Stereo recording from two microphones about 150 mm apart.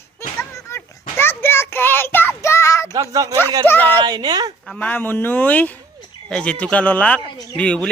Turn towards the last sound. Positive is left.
turn(degrees=5)  # may be behind; listen again after turning